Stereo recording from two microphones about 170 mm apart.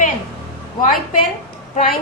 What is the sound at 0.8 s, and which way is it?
Speech, 55° left (ahead or behind).